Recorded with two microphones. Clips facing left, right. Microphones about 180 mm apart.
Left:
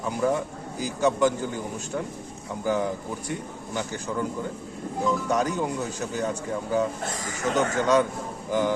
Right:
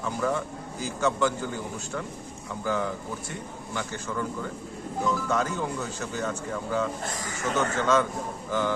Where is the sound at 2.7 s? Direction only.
15° left (ahead or behind).